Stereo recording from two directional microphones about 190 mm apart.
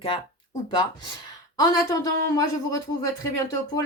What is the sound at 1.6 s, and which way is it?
Speech, 20° left (ahead or behind).